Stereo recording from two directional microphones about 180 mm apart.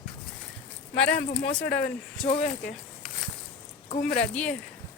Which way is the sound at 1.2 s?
50° left (ahead or behind).